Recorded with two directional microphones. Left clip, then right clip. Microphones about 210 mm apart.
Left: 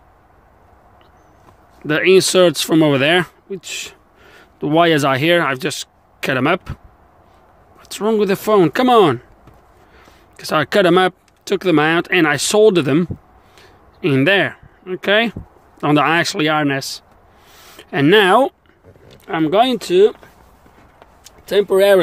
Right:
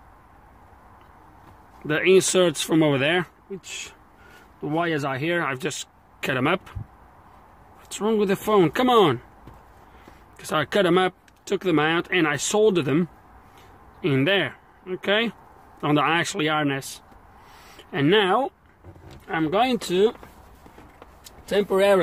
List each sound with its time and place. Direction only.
1.9 s speech: 30° left (ahead or behind)
7.9 s speech: 30° left (ahead or behind)
10.3 s speech: 30° left (ahead or behind)
13.6 s a sound: 35° left (ahead or behind)
15.8 s speech: 35° left (ahead or behind)
21.2 s a sound: 45° left (ahead or behind)